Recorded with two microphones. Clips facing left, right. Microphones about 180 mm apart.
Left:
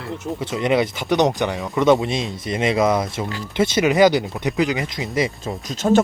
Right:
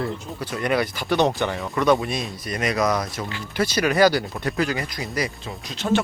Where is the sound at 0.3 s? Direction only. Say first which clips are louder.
Left 4 dB; 20° left (ahead or behind).